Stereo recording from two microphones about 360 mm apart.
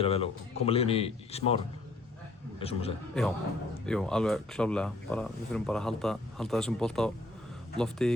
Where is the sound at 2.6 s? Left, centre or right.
Centre.